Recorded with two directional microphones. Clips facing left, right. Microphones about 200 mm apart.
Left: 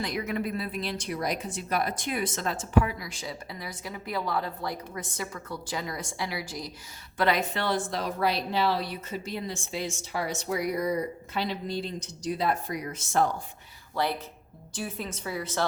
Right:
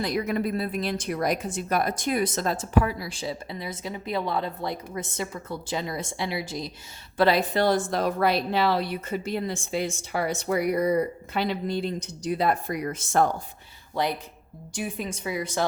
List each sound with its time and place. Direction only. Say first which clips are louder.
0.0 s a woman's voice: right 4 dB; 35° right (ahead or behind); by 13.2 s 55° right (ahead or behind)
13.9 s a woman's voice: right 2 dB; 15° right (ahead or behind)